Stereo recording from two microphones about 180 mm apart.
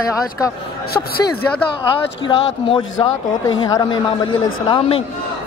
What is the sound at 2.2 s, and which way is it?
A man's voice, 30° left (ahead or behind).